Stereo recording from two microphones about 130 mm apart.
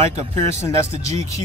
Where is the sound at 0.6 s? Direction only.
20° left (ahead or behind).